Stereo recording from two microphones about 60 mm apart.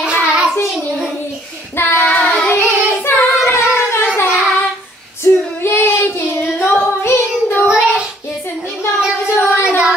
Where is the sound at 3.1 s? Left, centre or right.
Left.